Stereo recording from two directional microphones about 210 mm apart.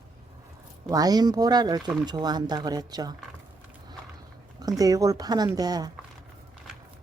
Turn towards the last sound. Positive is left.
turn(degrees=-20)  # may be behind; listen again after turning